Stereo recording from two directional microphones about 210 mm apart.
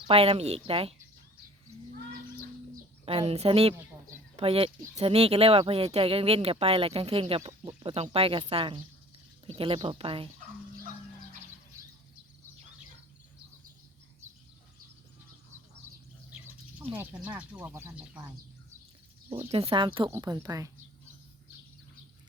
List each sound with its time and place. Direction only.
0.1 s a woman's voice: 30° right (ahead or behind)
3.1 s a woman's voice: 30° right (ahead or behind)
16.9 s speech: 10° right (ahead or behind)
19.5 s a woman's voice: 25° right (ahead or behind)